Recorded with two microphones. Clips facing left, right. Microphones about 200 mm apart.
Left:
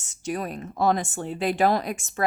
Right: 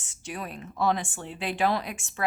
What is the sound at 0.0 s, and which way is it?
Speech, 40° left (ahead or behind).